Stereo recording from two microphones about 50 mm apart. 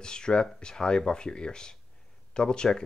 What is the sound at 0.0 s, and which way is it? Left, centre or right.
Speech, centre.